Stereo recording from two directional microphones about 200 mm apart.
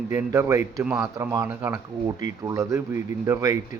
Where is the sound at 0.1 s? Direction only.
15° right (ahead or behind).